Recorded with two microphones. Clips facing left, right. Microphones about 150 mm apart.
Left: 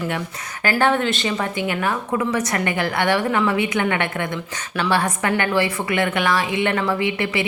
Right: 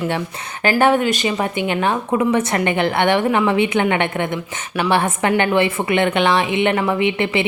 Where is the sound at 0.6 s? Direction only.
20° right (ahead or behind).